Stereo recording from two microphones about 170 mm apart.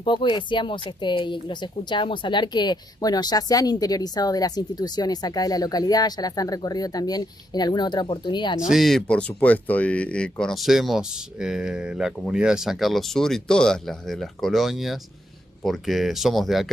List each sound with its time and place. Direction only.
0.0 s speech: 30° left (ahead or behind)
8.5 s speech: 5° right (ahead or behind)